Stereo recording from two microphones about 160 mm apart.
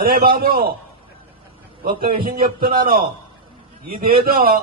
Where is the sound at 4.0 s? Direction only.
65° right (ahead or behind).